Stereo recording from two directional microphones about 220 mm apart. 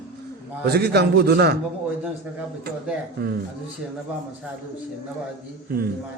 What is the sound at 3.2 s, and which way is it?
Speech, 45° right (ahead or behind).